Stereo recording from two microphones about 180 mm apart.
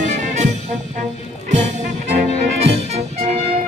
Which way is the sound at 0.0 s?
40° right (ahead or behind).